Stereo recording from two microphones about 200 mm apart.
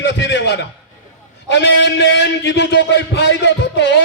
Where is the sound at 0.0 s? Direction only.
60° left (ahead or behind).